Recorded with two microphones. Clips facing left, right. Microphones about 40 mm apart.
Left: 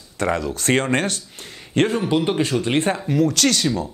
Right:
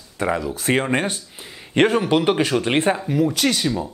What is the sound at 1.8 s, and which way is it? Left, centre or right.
Speech, right.